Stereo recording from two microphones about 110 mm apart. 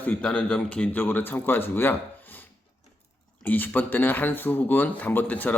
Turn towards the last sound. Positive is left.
turn(degrees=15)  # may be behind; listen again after turning